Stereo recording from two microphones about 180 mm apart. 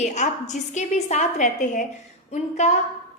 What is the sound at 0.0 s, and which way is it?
A woman's voice, 40° left (ahead or behind).